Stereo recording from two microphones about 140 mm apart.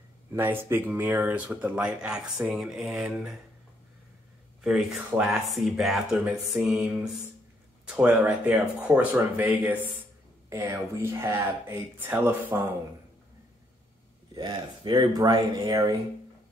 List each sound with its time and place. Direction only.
0.3 s speech: 15° right (ahead or behind)
5.1 s speech: 5° right (ahead or behind)
14.3 s speech: 30° right (ahead or behind)